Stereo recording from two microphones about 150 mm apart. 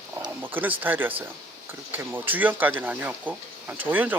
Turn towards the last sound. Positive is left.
turn(degrees=-10)  # may be behind; listen again after turning